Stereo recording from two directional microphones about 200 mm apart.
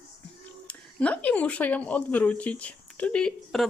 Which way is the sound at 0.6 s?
5° left (ahead or behind).